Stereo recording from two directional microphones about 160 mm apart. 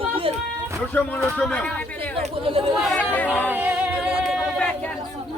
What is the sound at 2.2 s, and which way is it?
Speech, 35° right (ahead or behind).